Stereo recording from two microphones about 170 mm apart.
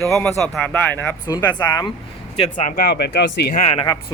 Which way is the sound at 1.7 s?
25° left (ahead or behind).